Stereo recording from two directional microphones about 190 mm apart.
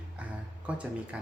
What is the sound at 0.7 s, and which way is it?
Speech, 5° right (ahead or behind).